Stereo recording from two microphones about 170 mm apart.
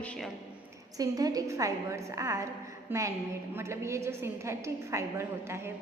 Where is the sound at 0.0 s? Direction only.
5° left (ahead or behind).